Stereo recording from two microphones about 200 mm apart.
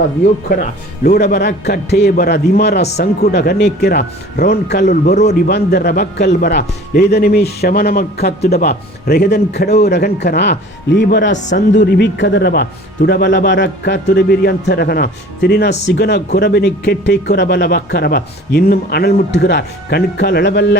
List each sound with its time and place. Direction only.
0.4 s speech: 50° left (ahead or behind)